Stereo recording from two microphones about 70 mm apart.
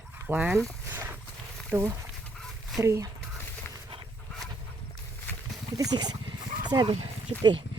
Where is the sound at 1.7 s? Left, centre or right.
Right.